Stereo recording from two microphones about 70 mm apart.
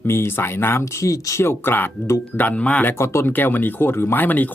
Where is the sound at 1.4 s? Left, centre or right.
Left.